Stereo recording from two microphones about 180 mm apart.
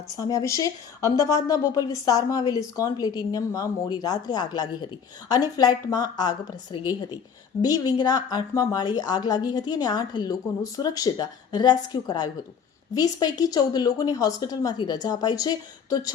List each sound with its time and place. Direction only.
0.2 s a woman's voice: 20° left (ahead or behind)